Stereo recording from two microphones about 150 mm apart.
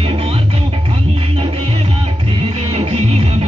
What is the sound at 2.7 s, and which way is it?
Music, 45° right (ahead or behind).